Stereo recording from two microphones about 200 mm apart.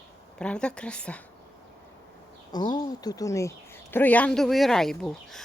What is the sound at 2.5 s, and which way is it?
Speech, 20° left (ahead or behind).